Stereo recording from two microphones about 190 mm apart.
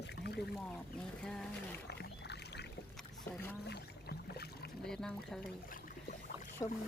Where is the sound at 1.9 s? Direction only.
60° left (ahead or behind).